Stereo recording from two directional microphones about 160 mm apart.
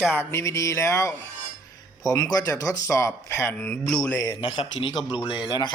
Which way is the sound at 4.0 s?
20° left (ahead or behind).